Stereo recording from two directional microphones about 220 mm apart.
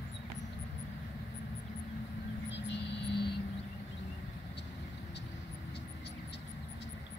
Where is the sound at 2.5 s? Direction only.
50° left (ahead or behind).